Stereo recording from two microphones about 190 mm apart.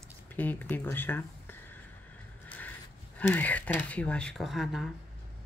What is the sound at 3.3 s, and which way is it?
A woman's voice, 10° left (ahead or behind).